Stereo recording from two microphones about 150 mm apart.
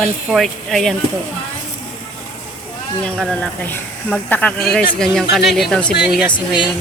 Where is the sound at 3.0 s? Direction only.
5° left (ahead or behind).